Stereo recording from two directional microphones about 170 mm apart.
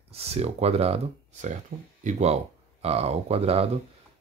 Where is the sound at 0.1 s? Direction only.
35° right (ahead or behind).